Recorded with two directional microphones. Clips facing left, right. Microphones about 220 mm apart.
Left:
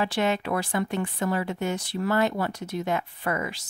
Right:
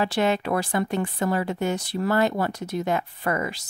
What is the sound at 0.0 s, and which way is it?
A woman's voice, 35° right (ahead or behind).